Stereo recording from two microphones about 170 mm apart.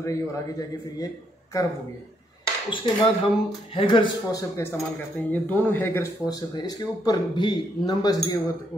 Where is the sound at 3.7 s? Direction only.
30° left (ahead or behind).